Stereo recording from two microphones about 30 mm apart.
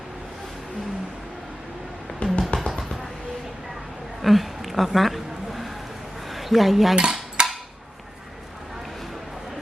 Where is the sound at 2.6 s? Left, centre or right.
Centre.